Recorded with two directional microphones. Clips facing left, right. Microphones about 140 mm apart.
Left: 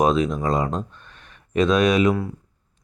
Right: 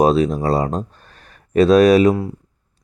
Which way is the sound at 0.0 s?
35° right (ahead or behind).